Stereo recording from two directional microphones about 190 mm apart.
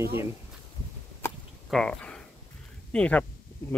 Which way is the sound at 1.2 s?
15° left (ahead or behind).